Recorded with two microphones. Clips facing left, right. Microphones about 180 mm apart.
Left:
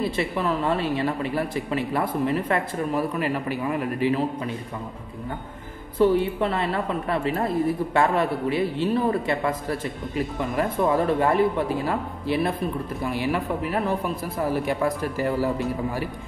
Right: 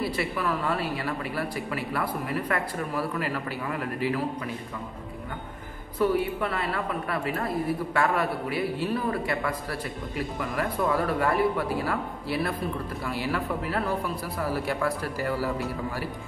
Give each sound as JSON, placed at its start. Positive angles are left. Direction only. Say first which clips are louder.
{"t": 0.0, "sound": "a woman's voice", "louder": "left 3 dB", "side_deg": 20}
{"t": 5.9, "sound": "a woman's voice", "louder": "left 5 dB", "side_deg": 25}